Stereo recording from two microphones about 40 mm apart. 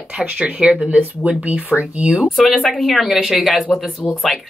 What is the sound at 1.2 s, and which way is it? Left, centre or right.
Speech, right.